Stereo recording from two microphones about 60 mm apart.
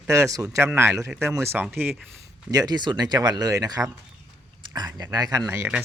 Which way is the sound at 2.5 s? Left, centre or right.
Right.